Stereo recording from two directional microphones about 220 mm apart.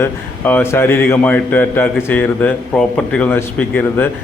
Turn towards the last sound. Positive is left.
turn(degrees=10)  # may be behind; listen again after turning